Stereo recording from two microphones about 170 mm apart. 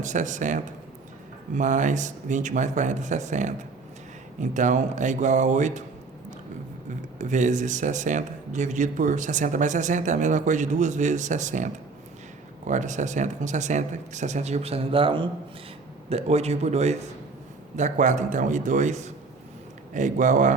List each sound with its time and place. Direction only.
0.0 s speech: 45° right (ahead or behind)
7.2 s a man's voice: 45° right (ahead or behind)